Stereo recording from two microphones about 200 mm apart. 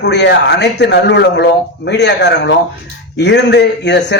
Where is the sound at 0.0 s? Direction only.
60° left (ahead or behind).